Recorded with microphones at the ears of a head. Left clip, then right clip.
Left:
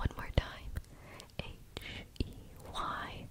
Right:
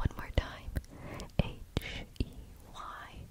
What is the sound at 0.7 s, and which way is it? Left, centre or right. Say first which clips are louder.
Whispering: right 6 dB; right.